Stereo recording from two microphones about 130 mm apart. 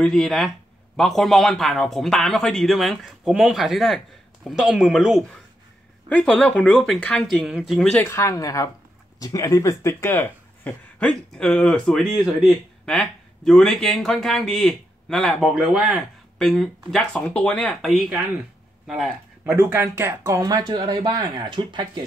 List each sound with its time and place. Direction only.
0.0 s speech: centre (ahead or behind)
8.0 s speech: 20° left (ahead or behind)
11.0 s speech: 5° left (ahead or behind)
18.9 s speech: 5° right (ahead or behind)
19.5 s speech: 20° right (ahead or behind); by 22.0 s 35° right (ahead or behind)